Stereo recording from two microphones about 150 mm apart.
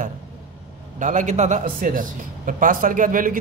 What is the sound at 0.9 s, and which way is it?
Speech, 55° right (ahead or behind).